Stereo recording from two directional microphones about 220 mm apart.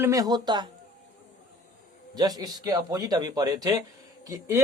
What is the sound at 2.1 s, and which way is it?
A man's voice, 15° right (ahead or behind).